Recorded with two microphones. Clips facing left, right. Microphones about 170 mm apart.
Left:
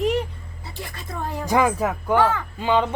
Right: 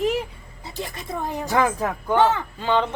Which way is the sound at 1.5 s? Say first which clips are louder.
Left 2 dB; 10° left (ahead or behind).